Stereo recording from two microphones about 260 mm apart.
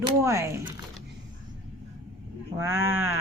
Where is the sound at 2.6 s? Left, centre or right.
Centre.